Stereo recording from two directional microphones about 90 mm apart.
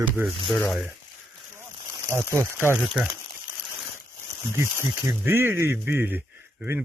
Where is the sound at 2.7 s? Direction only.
5° right (ahead or behind).